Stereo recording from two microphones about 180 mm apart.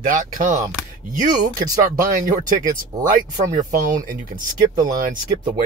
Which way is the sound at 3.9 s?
50° right (ahead or behind).